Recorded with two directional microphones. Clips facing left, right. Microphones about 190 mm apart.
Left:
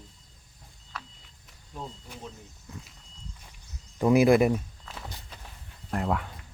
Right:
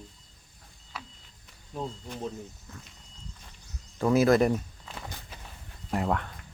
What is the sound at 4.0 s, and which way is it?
Speech, 15° left (ahead or behind).